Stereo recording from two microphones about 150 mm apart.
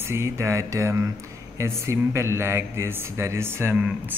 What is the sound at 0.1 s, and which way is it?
Speech, 15° right (ahead or behind).